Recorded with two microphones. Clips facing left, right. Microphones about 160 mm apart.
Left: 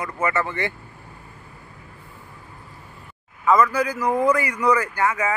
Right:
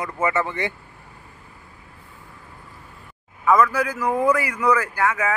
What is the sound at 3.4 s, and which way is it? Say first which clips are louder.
Speech: even; 5° right (ahead or behind).